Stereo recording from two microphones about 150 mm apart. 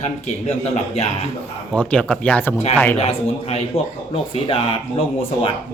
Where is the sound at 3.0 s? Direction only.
40° left (ahead or behind).